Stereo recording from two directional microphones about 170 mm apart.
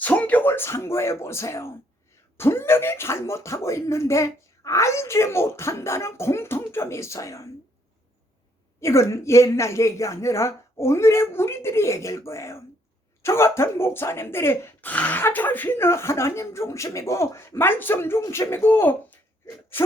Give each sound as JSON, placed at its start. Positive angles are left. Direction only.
{"t": 0.0, "sound": "speech", "side_deg": 10}
{"t": 8.8, "sound": "speech", "side_deg": 15}